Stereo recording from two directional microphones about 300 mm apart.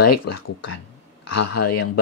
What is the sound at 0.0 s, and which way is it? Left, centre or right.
Speech, left.